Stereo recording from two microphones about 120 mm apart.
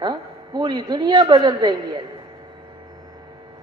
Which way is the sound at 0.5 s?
40° right (ahead or behind).